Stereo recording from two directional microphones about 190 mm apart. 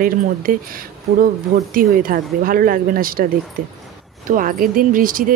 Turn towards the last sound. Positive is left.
turn(degrees=-45)  # may be behind; listen again after turning